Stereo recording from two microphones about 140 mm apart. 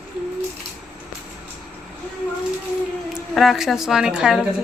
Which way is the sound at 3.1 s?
Centre (ahead or behind).